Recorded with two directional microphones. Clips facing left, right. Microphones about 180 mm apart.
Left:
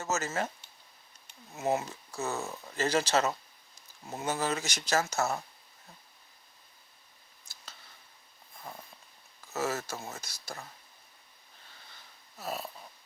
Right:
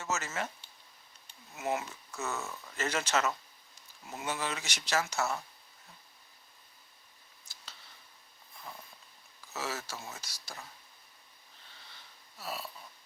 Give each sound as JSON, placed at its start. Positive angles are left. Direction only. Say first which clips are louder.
{"t": 0.0, "sound": "speech", "louder": "left 4 dB", "side_deg": 40}
{"t": 1.5, "sound": "speech", "louder": "left 4 dB", "side_deg": 30}
{"t": 9.5, "sound": "speech", "louder": "left 6 dB", "side_deg": 50}
{"t": 12.4, "sound": "speech", "louder": "left 3 dB", "side_deg": 45}